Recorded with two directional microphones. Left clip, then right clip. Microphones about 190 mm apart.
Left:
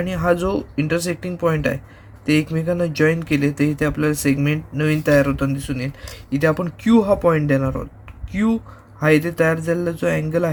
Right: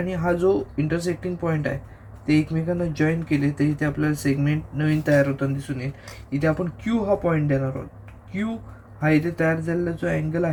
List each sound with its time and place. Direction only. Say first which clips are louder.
0.0 s a man's voice: left 3 dB; 55° left (ahead or behind)
9.0 s a man's voice: left 5 dB; 55° left (ahead or behind)